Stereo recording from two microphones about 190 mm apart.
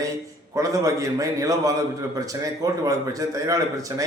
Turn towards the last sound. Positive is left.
turn(degrees=-20)  # may be behind; listen again after turning